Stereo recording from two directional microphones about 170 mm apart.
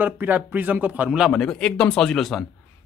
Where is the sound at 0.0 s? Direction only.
10° right (ahead or behind).